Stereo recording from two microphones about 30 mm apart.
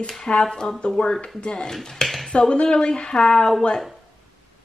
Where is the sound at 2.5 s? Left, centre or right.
Left.